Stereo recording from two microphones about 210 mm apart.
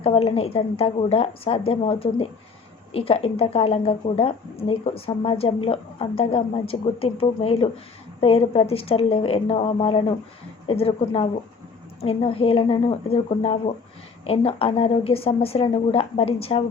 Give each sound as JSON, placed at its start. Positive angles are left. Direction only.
{"t": 0.0, "sound": "speech", "side_deg": 30}